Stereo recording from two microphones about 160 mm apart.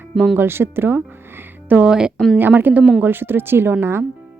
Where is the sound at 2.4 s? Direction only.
10° right (ahead or behind).